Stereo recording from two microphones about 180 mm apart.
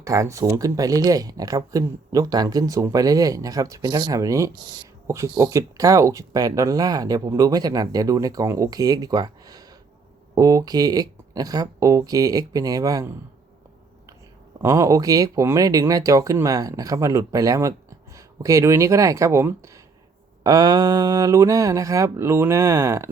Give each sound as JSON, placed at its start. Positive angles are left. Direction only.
{"t": 0.0, "sound": "speech", "side_deg": -20}
{"t": 14.6, "sound": "speech", "side_deg": -15}